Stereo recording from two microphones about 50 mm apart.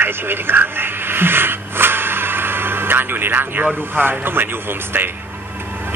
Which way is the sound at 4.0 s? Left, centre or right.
Right.